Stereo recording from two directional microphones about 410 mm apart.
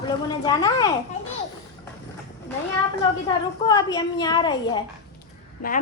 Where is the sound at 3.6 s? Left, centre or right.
Centre.